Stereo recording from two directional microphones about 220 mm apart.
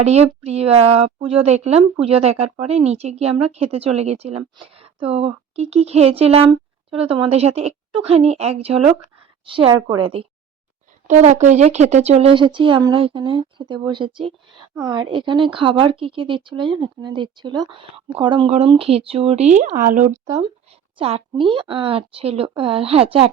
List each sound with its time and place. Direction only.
0.0 s a woman's voice: 30° right (ahead or behind)
21.0 s a woman's voice: 25° right (ahead or behind)